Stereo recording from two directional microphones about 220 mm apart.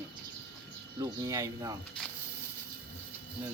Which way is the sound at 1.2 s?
15° right (ahead or behind).